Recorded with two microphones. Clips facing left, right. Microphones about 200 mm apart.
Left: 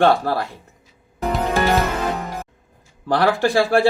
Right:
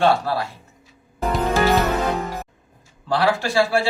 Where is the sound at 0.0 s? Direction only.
55° left (ahead or behind).